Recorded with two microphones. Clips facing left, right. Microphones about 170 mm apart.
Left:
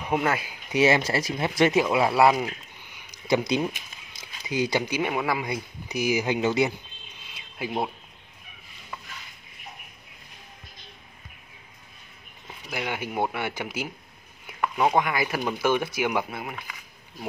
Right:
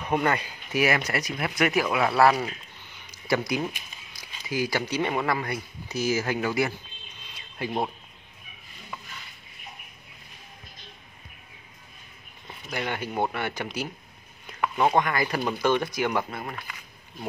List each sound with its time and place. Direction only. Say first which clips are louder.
0.1 s speech: even; 5° left (ahead or behind)
0.7 s speech: left 4 dB; 25° left (ahead or behind)
7.3 s a sound: even; 5° left (ahead or behind)
12.4 s speech: even; 5° left (ahead or behind)